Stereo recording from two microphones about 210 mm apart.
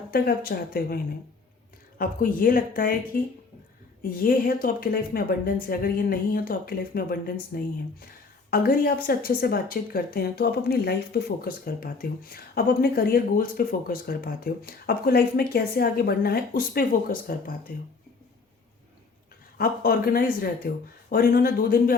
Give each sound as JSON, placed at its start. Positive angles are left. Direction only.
{"t": 0.1, "sound": "a woman's voice", "side_deg": 45}
{"t": 2.0, "sound": "a woman's voice", "side_deg": 45}
{"t": 19.5, "sound": "a woman's voice", "side_deg": 45}